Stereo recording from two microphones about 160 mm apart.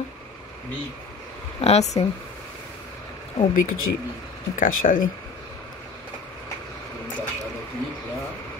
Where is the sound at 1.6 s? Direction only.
45° left (ahead or behind).